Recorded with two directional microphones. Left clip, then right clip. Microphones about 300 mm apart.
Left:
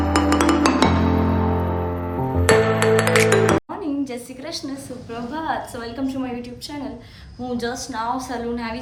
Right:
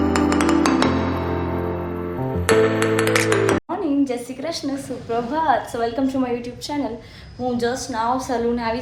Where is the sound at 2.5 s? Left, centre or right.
Centre.